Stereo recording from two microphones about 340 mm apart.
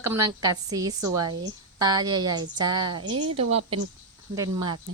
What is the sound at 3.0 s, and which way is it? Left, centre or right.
Speech, right.